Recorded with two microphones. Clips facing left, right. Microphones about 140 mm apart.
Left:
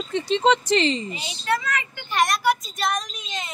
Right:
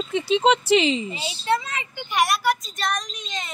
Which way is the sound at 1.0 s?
30° right (ahead or behind).